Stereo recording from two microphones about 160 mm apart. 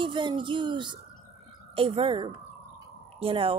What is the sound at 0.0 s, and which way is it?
Speech, 30° right (ahead or behind).